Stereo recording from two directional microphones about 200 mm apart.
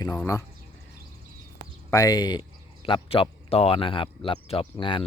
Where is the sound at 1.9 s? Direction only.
20° left (ahead or behind).